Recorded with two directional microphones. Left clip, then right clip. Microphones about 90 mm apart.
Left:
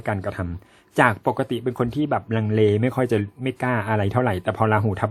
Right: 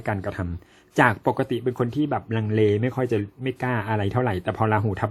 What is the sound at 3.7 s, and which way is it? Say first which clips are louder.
Speech: left 3 dB; 25° left (ahead or behind).